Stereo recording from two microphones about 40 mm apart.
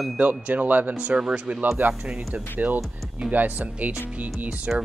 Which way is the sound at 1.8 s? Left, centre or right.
Right.